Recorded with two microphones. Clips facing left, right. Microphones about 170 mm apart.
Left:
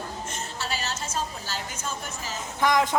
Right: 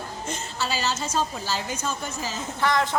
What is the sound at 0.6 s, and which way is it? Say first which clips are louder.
Speech: right 6 dB; 90° right.